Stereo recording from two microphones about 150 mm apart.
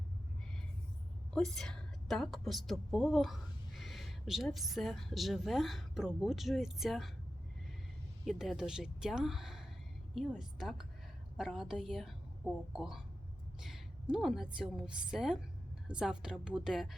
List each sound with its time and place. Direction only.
1.3 s a woman's voice: 5° left (ahead or behind)
8.2 s a woman's voice: centre (ahead or behind)